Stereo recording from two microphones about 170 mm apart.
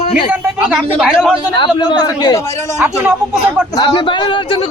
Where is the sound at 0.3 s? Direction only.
10° right (ahead or behind).